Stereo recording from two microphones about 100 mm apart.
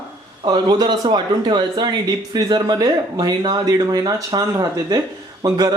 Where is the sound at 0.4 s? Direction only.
45° right (ahead or behind).